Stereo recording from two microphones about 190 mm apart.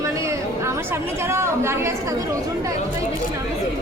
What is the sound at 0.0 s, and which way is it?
Speech, 15° right (ahead or behind).